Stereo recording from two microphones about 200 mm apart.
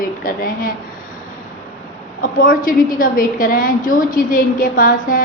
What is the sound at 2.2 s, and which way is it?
A woman's voice, 45° left (ahead or behind).